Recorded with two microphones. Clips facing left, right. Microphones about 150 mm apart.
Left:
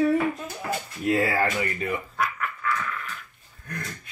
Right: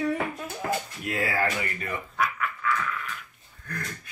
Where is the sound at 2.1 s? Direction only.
Centre (ahead or behind).